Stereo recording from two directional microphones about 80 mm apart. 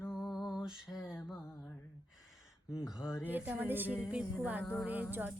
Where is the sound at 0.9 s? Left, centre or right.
Left.